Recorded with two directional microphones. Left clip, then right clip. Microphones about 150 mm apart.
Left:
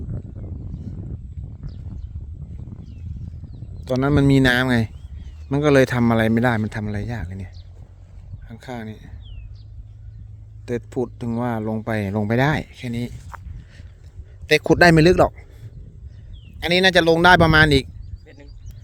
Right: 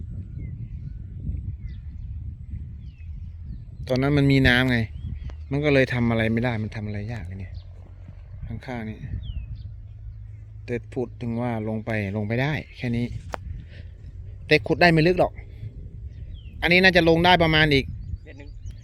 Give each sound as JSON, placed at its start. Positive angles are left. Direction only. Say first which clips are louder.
{"t": 3.8, "sound": "speech", "louder": "left 3 dB", "side_deg": 20}
{"t": 6.6, "sound": "speech", "louder": "left 6 dB", "side_deg": 55}
{"t": 8.4, "sound": "speech", "louder": "left 1 dB", "side_deg": 30}
{"t": 10.7, "sound": "speech", "louder": "left 4 dB", "side_deg": 35}
{"t": 14.4, "sound": "a man's voice", "louder": "left 4 dB", "side_deg": 65}
{"t": 16.6, "sound": "speech", "louder": "left 1 dB", "side_deg": 35}